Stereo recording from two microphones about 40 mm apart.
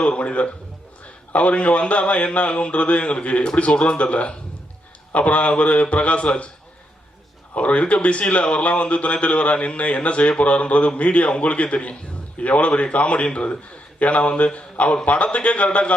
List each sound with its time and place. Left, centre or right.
0.0 s speech: left
7.5 s a man's voice: left